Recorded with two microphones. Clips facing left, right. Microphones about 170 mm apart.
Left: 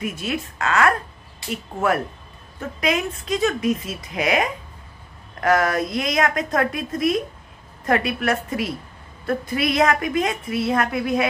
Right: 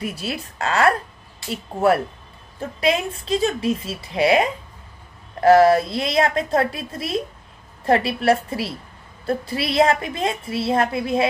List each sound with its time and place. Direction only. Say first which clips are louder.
0.0 s a woman's voice: left 1 dB; 35° right (ahead or behind)